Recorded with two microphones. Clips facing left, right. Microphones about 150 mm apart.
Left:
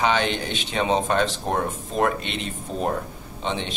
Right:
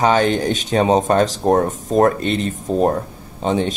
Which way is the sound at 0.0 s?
40° right (ahead or behind).